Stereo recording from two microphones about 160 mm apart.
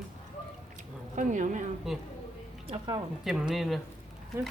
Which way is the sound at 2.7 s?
30° right (ahead or behind).